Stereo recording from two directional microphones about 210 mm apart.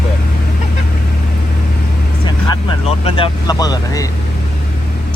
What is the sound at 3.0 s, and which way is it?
Speech, 20° left (ahead or behind).